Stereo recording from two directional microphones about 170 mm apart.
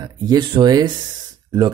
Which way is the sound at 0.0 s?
25° right (ahead or behind).